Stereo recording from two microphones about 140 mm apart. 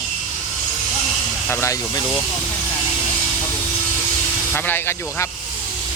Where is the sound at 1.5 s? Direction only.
20° left (ahead or behind).